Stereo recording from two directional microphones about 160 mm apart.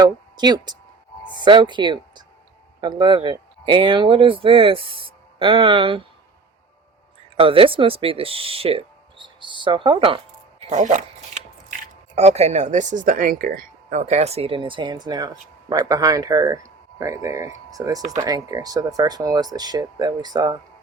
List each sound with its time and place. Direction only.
0.0 s speech: 25° right (ahead or behind)
7.3 s speech: 35° right (ahead or behind)
10.7 s speech: 50° right (ahead or behind)
12.1 s speech: 45° right (ahead or behind); by 20.6 s 25° right (ahead or behind)